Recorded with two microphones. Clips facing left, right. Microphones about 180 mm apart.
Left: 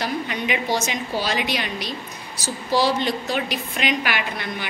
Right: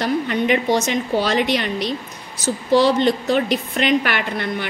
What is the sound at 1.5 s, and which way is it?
A woman's voice, 60° right (ahead or behind).